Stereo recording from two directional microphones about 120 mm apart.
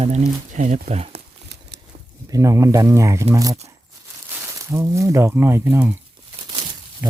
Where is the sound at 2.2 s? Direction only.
25° right (ahead or behind).